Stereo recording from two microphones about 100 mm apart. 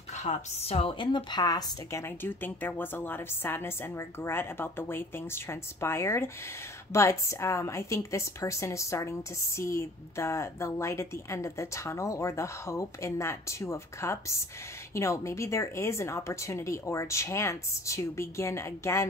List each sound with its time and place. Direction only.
0.2 s a woman's voice: 90° left; by 19.0 s 30° left (ahead or behind)